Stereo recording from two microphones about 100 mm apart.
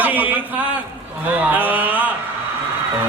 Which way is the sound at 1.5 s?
20° right (ahead or behind).